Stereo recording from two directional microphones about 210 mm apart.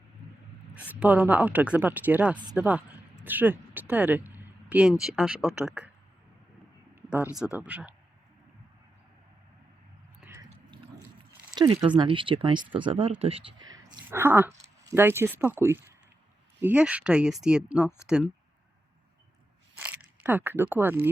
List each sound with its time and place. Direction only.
0.9 s speech: 5° right (ahead or behind)
6.9 s a sound: 10° right (ahead or behind)
7.3 s speech: 5° right (ahead or behind)
10.2 s a sound: 10° right (ahead or behind)
11.5 s speech: 20° right (ahead or behind)
14.0 s speech: 10° right (ahead or behind)
19.7 s speech: 5° right (ahead or behind)